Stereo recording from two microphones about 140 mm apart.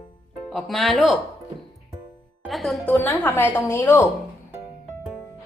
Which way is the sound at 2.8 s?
10° left (ahead or behind).